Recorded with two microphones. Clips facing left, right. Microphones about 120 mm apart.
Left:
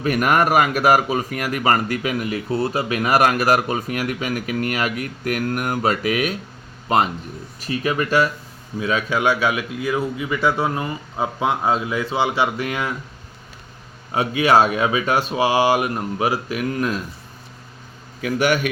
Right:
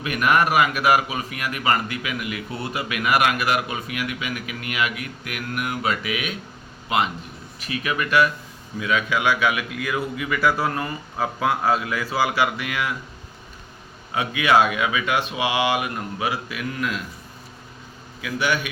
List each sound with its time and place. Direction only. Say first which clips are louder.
0.0 s a man's voice: left 2 dB; 40° left (ahead or behind); by 12.5 s 20° left (ahead or behind)
12.5 s speech: left 3 dB; 35° left (ahead or behind)
14.1 s speech: left 3 dB; 35° left (ahead or behind)
18.2 s a man's voice: left 5 dB; 45° left (ahead or behind)